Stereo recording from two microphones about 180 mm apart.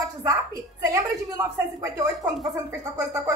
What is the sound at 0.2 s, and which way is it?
A woman's voice, 15° right (ahead or behind).